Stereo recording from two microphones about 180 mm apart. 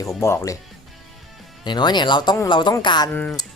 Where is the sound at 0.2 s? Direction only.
15° left (ahead or behind).